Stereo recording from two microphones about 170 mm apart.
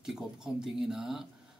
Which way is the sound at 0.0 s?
5° right (ahead or behind).